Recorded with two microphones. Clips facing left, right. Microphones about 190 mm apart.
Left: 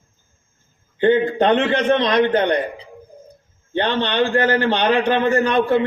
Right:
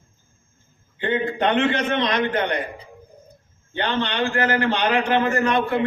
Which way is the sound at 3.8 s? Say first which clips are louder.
Left 5 dB; 30° left (ahead or behind).